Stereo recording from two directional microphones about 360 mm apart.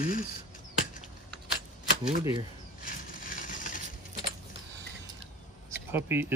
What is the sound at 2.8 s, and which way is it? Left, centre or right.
Crushing, left.